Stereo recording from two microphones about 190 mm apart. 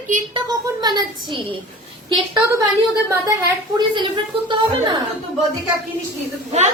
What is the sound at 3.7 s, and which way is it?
Speech, 25° right (ahead or behind).